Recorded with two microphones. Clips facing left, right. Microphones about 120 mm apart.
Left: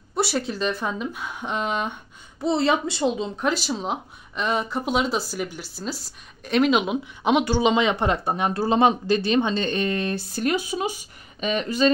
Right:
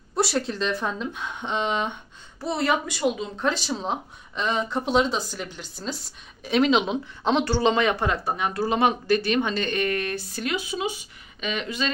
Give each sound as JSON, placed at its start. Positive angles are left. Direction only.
{"t": 0.1, "sound": "a woman's voice", "side_deg": 0}
{"t": 2.4, "sound": "speech", "side_deg": 20}
{"t": 3.3, "sound": "speech", "side_deg": 10}
{"t": 10.4, "sound": "speech", "side_deg": 45}